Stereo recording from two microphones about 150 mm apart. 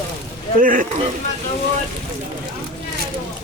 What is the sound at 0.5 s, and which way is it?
Speech, 65° right (ahead or behind).